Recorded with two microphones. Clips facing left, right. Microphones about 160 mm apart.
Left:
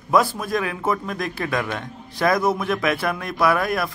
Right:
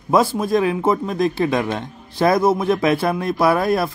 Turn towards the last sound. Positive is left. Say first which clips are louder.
# right 4 dB
turn(degrees=-30)  # may be behind; listen again after turning